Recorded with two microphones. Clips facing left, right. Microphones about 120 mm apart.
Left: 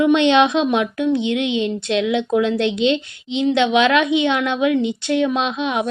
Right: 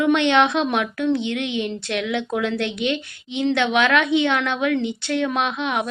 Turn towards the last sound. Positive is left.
turn(degrees=20)  # may be behind; listen again after turning